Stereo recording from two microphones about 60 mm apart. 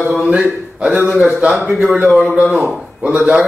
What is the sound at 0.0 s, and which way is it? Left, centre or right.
A man's voice, right.